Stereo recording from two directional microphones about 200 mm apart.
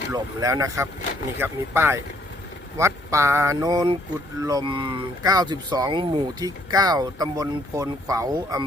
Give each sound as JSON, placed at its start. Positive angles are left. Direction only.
{"t": 0.1, "sound": "speech", "side_deg": -15}